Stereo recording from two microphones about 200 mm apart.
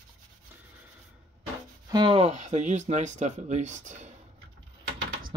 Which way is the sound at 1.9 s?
25° right (ahead or behind).